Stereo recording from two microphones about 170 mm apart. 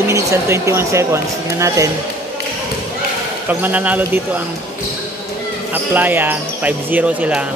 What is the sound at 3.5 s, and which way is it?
Speech, 10° right (ahead or behind).